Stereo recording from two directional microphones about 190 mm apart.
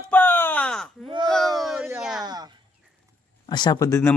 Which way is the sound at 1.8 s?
15° right (ahead or behind).